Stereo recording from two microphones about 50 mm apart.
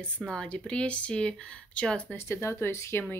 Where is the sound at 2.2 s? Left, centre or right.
Left.